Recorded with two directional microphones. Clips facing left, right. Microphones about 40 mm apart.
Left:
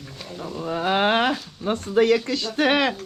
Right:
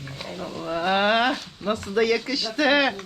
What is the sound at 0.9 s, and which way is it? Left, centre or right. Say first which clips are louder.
Speech: even; right.